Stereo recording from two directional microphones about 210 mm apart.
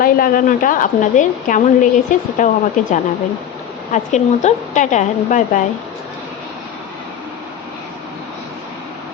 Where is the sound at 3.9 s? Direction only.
35° left (ahead or behind).